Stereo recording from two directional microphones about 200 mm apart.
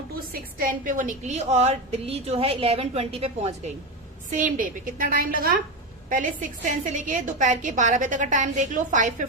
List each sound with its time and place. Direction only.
0.3 s a woman's voice: 45° right (ahead or behind)